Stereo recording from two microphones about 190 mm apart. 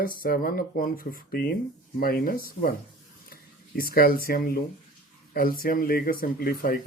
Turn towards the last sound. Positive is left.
turn(degrees=50)  # may be behind; listen again after turning